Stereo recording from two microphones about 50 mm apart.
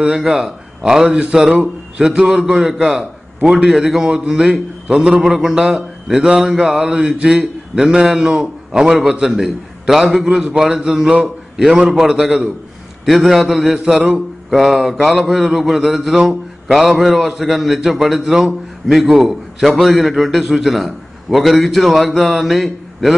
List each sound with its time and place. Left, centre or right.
0.1 s a man's voice: centre
7.1 s a man's voice: right
13.0 s a man's voice: centre
16.3 s mantra: centre
17.0 s a man's voice: centre